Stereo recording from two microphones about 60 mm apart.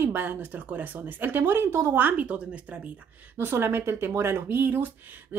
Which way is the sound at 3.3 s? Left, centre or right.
Right.